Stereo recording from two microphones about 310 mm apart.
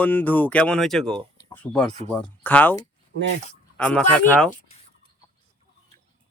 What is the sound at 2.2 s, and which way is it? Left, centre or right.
Speech, centre.